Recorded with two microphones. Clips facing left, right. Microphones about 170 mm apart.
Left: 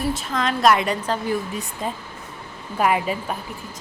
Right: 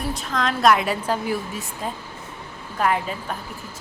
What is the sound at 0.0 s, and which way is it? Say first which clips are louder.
A woman's voice: left 2 dB; centre (ahead or behind).